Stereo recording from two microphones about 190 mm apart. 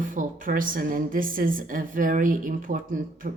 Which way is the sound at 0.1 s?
45° right (ahead or behind).